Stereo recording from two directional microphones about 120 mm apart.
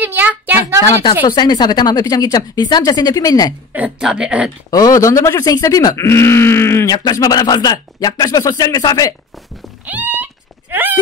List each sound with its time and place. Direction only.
0.0 s child singing: 15° right (ahead or behind)
1.2 s a woman's voice: 35° left (ahead or behind)
3.7 s speech: 10° right (ahead or behind)
4.6 s a woman's voice: 30° left (ahead or behind)
9.8 s a sound: 15° right (ahead or behind)